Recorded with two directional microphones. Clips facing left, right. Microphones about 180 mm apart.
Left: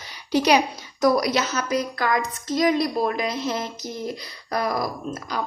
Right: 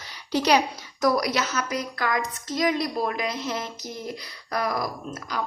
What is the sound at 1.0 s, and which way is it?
A woman's voice, 25° left (ahead or behind).